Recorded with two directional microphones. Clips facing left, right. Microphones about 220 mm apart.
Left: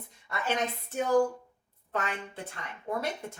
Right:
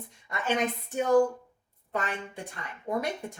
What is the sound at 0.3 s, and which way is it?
A woman's voice, 15° right (ahead or behind).